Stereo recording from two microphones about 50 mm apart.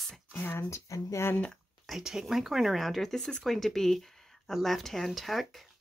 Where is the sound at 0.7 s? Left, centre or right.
Left.